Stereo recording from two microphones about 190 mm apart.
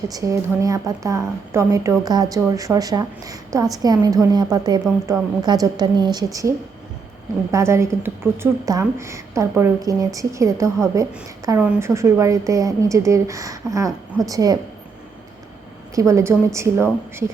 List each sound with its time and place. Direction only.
0.1 s a woman's voice: 20° right (ahead or behind)
7.5 s a woman's voice: 15° right (ahead or behind)
16.0 s a woman's voice: 15° right (ahead or behind)